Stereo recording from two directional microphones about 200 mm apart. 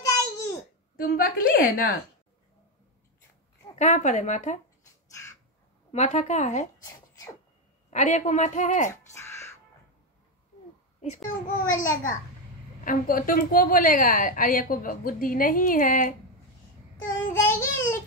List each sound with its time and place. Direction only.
0.0 s babbling: 15° left (ahead or behind)
0.9 s a woman's voice: 45° left (ahead or behind)
3.7 s a woman's voice: 35° left (ahead or behind)
5.9 s a woman's voice: 35° left (ahead or behind)
7.9 s a woman's voice: 35° left (ahead or behind)
9.1 s music: 15° left (ahead or behind)
11.4 s a woman's voice: 40° left (ahead or behind)
17.3 s child singing: 15° left (ahead or behind)